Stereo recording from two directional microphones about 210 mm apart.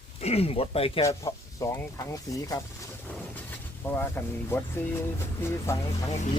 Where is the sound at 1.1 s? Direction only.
15° left (ahead or behind).